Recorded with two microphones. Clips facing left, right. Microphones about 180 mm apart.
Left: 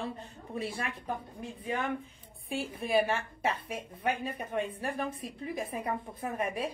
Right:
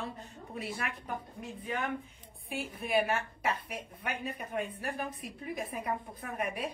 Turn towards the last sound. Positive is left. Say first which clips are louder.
# left 3 dB
turn(degrees=25)  # may be behind; listen again after turning